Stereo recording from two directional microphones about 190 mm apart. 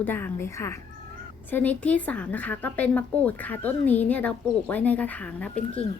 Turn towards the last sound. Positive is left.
turn(degrees=5)  # may be behind; listen again after turning